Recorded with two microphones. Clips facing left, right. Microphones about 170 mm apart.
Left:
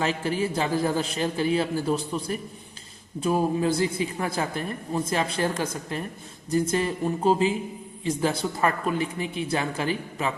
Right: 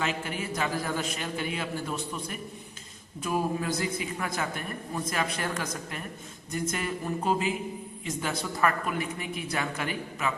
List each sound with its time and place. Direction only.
0.0 s a man's voice: 35° left (ahead or behind)